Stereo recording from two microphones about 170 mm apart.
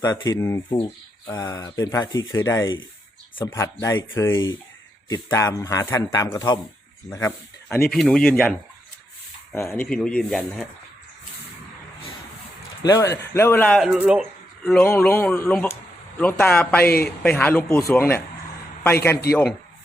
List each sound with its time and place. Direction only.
0.0 s speech: 20° left (ahead or behind)
7.9 s speech: centre (ahead or behind)
9.6 s speech: 15° left (ahead or behind)
9.8 s speech: 5° left (ahead or behind)
12.8 s speech: 20° left (ahead or behind)
13.7 s speech: 5° right (ahead or behind)
16.8 s speech: 65° left (ahead or behind)
17.2 s a man's voice: 10° left (ahead or behind)